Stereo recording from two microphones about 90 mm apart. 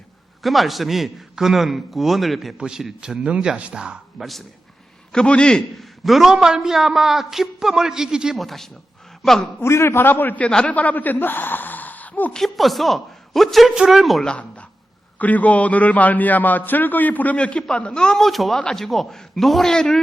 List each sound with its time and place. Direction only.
0.4 s a man's voice: centre (ahead or behind)
9.6 s a man's voice: 30° left (ahead or behind)
12.3 s a man's voice: centre (ahead or behind)
14.3 s a woman's voice: 15° left (ahead or behind)